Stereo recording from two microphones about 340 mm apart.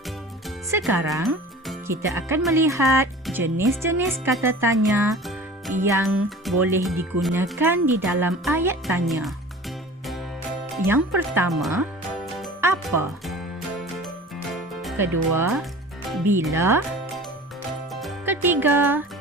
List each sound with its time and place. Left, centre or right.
0.4 s speech: centre
10.8 s music: centre
12.9 s speech: right
14.8 s music: centre
16.3 s speech: centre
18.0 s music: centre